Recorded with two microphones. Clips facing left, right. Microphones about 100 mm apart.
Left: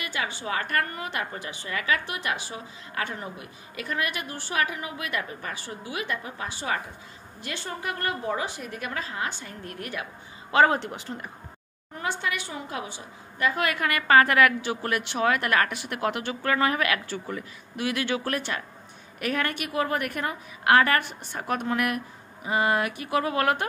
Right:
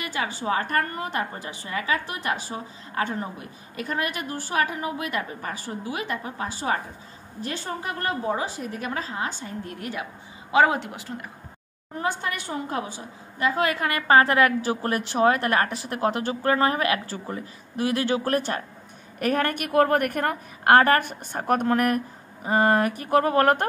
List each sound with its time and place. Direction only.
0.0 s a sound: 35° right (ahead or behind)
0.4 s a woman's voice: 35° right (ahead or behind)
10.5 s speech: 5° right (ahead or behind)
12.0 s a woman's voice: 40° right (ahead or behind)
13.4 s a woman's voice: 25° right (ahead or behind); by 23.7 s 45° right (ahead or behind)